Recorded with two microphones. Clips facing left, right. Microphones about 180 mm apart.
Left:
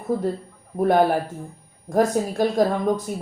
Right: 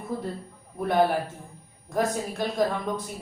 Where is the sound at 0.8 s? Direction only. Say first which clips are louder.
Left 5 dB; 45° left (ahead or behind).